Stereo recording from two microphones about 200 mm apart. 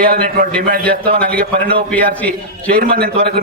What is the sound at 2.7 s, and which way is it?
Speech, 45° right (ahead or behind).